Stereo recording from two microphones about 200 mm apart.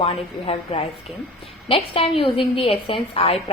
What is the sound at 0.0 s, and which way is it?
A woman's voice, 30° left (ahead or behind).